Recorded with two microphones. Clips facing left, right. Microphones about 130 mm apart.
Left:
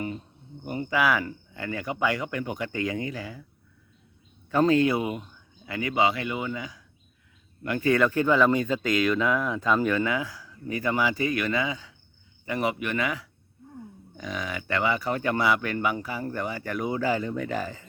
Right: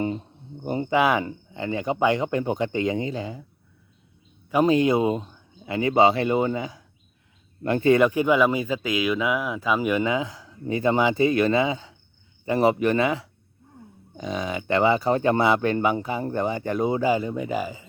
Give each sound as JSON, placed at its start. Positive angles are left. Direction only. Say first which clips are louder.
{"t": 0.0, "sound": "speech", "louder": "right 6 dB", "side_deg": -30}
{"t": 4.5, "sound": "speech", "louder": "right 2 dB", "side_deg": -15}